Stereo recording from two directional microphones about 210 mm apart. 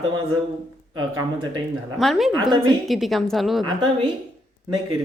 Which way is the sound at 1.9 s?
Centre (ahead or behind).